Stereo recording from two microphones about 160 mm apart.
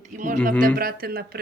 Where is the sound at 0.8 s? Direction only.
70° right (ahead or behind).